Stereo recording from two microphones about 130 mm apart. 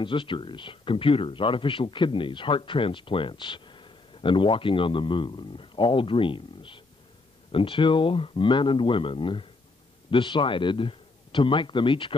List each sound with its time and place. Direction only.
0.0 s speech: 40° left (ahead or behind)